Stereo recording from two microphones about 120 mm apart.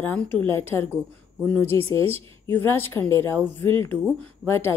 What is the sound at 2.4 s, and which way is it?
A woman's voice, 20° left (ahead or behind).